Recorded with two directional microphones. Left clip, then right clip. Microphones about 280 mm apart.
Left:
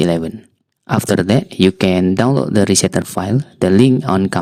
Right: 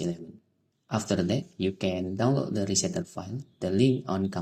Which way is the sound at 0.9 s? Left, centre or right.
Left.